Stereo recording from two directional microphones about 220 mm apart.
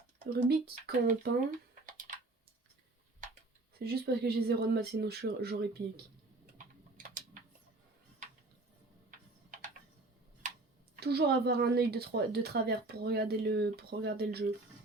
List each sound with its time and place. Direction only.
0.3 s speech: 50° right (ahead or behind)
3.8 s speech: 45° right (ahead or behind)
9.0 s tick-tock: 35° right (ahead or behind)
11.0 s speech: 45° right (ahead or behind)